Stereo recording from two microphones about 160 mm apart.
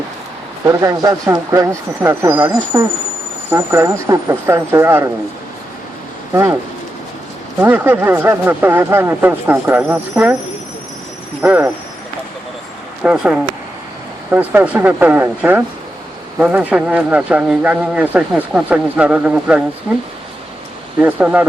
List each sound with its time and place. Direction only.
0.6 s speech: 20° right (ahead or behind)
6.3 s speech: 15° right (ahead or behind)
7.6 s speech: 10° right (ahead or behind)
11.4 s speech: 10° right (ahead or behind)
13.0 s speech: 5° right (ahead or behind)
21.0 s speech: 10° right (ahead or behind)